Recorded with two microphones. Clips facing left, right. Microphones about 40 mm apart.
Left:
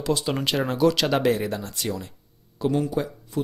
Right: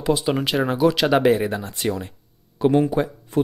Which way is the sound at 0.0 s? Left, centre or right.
Centre.